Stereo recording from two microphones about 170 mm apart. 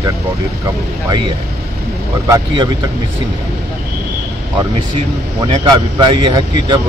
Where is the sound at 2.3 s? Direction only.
20° right (ahead or behind).